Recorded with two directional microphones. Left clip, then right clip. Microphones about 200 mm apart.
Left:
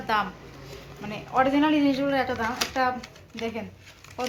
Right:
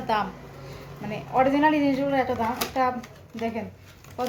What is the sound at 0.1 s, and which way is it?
Speech, 5° left (ahead or behind).